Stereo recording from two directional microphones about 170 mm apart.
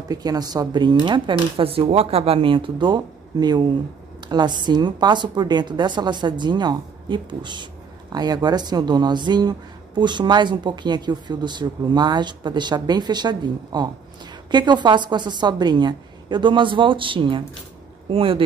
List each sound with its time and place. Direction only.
0.1 s speech: 20° right (ahead or behind)